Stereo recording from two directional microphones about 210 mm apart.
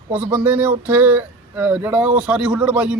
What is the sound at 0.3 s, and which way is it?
Speech, 10° right (ahead or behind).